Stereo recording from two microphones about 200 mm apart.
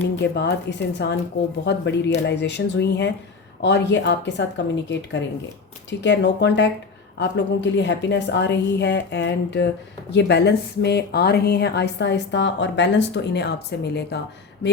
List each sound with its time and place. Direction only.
0.2 s speech: 60° left (ahead or behind)